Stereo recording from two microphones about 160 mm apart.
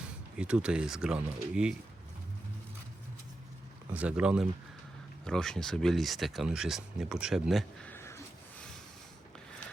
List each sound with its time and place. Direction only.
0.3 s speech: 5° right (ahead or behind)
3.9 s speech: 10° right (ahead or behind)
5.2 s speech: 5° left (ahead or behind)
7.9 s a sound: 15° left (ahead or behind)